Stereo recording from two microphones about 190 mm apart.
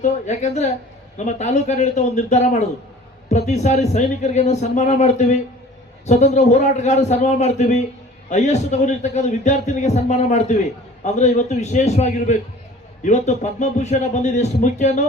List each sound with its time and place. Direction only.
0.0 s a man's voice: 35° left (ahead or behind)